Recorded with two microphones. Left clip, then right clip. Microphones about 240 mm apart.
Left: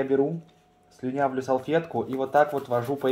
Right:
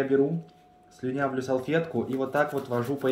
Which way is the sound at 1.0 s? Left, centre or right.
Centre.